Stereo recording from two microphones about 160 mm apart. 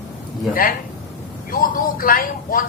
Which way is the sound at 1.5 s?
60° left (ahead or behind).